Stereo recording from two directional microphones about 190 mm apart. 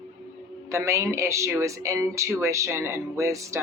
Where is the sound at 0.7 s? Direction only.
15° right (ahead or behind).